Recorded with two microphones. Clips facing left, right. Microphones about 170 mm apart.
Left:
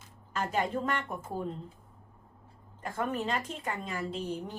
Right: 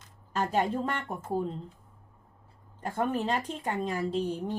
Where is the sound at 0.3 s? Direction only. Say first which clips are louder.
Right 3 dB; 35° right (ahead or behind).